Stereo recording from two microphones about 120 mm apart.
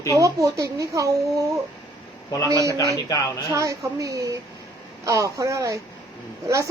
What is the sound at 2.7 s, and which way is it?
Speech, 30° left (ahead or behind).